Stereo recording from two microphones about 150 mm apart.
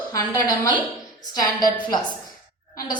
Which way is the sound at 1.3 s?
25° left (ahead or behind).